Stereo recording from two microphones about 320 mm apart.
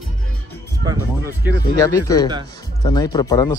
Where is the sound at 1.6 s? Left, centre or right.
Centre.